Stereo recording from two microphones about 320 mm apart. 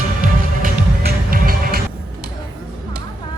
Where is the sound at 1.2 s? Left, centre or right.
Right.